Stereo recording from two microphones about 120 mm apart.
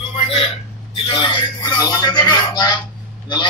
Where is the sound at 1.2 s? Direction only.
40° left (ahead or behind).